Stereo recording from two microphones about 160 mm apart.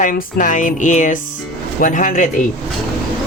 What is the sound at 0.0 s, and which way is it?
Speech, 55° left (ahead or behind).